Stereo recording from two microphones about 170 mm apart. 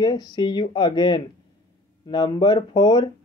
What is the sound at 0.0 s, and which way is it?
Speech, 25° left (ahead or behind).